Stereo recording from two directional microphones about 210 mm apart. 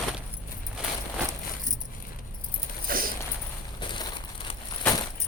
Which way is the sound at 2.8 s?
45° right (ahead or behind).